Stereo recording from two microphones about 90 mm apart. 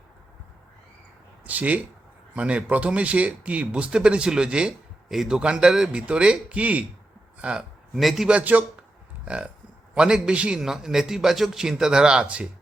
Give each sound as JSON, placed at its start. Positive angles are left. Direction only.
{"t": 1.5, "sound": "a sound", "side_deg": -15}
{"t": 2.3, "sound": "speech", "side_deg": -15}
{"t": 7.9, "sound": "a man's voice", "side_deg": 0}
{"t": 8.3, "sound": "speech", "side_deg": -15}